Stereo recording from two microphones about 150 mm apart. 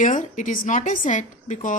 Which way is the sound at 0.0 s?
55° left (ahead or behind).